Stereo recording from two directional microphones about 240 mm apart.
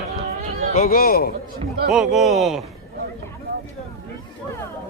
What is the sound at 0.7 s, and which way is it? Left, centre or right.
Speech, left.